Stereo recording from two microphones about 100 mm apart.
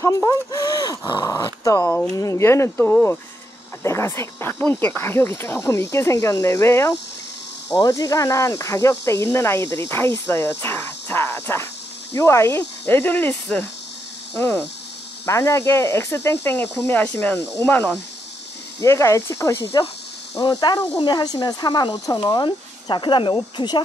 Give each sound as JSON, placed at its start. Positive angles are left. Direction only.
{"t": 0.0, "sound": "speech", "side_deg": 35}
{"t": 21.0, "sound": "speech", "side_deg": 45}
{"t": 22.3, "sound": "speech", "side_deg": 50}